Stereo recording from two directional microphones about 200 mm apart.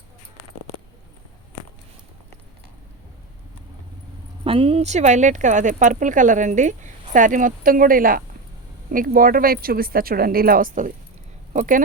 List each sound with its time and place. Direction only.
4.4 s speech: 25° right (ahead or behind)